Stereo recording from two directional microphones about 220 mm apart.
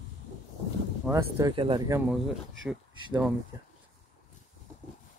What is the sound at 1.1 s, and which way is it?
Speech, 20° right (ahead or behind).